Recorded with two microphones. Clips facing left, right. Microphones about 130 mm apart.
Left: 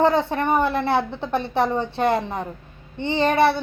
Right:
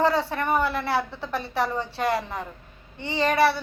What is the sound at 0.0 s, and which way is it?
A woman's voice, 20° left (ahead or behind).